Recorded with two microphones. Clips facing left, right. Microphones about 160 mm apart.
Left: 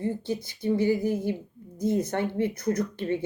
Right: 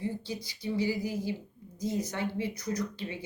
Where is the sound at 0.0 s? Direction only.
50° left (ahead or behind).